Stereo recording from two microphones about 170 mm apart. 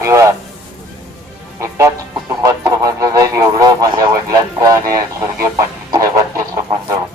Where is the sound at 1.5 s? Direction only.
20° right (ahead or behind).